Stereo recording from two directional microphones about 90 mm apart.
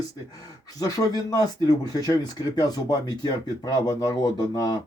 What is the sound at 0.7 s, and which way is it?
Speech, 45° left (ahead or behind).